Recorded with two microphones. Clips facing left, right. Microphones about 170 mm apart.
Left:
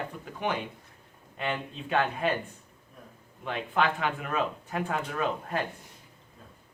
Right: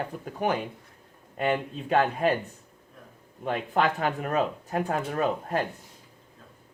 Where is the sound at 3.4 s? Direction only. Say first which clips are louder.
Right 3 dB; 40° right (ahead or behind).